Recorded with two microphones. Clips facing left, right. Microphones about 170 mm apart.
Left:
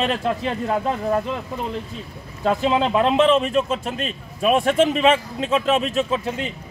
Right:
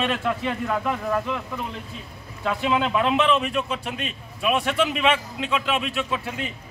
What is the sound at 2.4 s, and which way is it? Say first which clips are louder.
Speech: left 4 dB; 35° left (ahead or behind).